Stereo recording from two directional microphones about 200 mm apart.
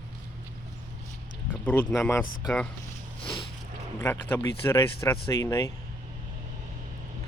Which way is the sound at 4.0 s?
10° left (ahead or behind).